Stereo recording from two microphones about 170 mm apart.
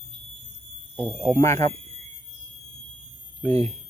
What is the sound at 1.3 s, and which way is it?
Speech, 15° left (ahead or behind).